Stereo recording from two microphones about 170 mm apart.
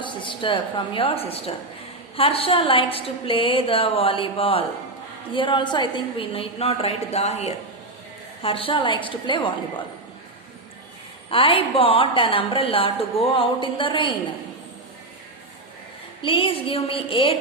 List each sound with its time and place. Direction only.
0.0 s a woman's voice: 30° left (ahead or behind)
11.3 s a woman's voice: 30° left (ahead or behind)
16.2 s a woman's voice: 30° left (ahead or behind)